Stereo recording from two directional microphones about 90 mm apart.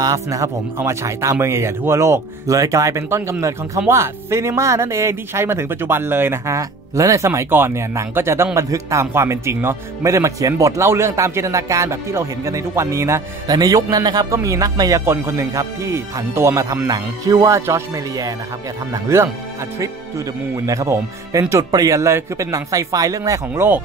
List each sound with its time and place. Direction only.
0.0 s speech: 35° right (ahead or behind)
13.5 s speech: 45° right (ahead or behind); by 17.8 s 30° right (ahead or behind)
19.1 s speech: 30° right (ahead or behind)
20.6 s speech: 35° right (ahead or behind)